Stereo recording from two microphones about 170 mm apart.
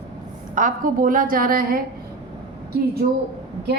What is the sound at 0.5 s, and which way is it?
Speech, 50° right (ahead or behind).